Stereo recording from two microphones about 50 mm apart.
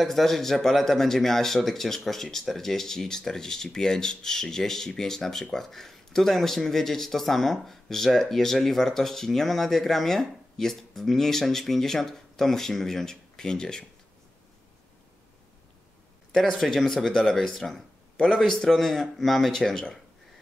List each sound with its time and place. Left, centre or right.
0.0 s speech: centre
16.3 s speech: centre